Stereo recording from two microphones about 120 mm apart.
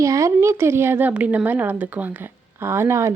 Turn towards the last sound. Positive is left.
turn(degrees=-20)  # may be behind; listen again after turning